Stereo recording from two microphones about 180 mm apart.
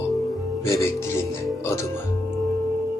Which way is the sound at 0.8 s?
15° left (ahead or behind).